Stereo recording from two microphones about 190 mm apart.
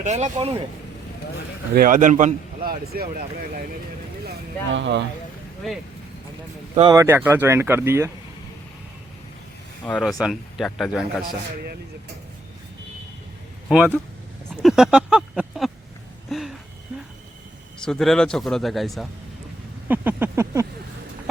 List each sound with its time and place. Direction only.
0.0 s speech: 40° right (ahead or behind)
1.7 s a man's voice: 45° right (ahead or behind)
4.3 s speech: 70° right (ahead or behind)
6.9 s speech: 15° right (ahead or behind)
9.8 s speech: 5° left (ahead or behind)
13.7 s speech: 5° right (ahead or behind)
14.5 s a sound: centre (ahead or behind)
16.3 s speech: centre (ahead or behind)
17.8 s speech: centre (ahead or behind); by 20.7 s 15° right (ahead or behind)